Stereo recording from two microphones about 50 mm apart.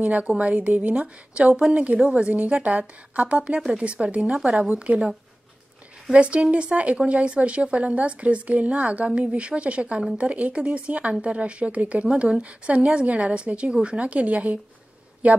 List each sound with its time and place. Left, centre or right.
0.0 s speech: right
3.4 s speech: centre
4.2 s a woman's voice: centre
4.6 s speech: right
6.1 s speech: right